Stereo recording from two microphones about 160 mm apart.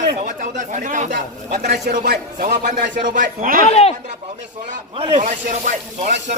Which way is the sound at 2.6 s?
55° right (ahead or behind).